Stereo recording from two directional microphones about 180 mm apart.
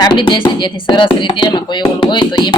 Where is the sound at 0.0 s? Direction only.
25° left (ahead or behind).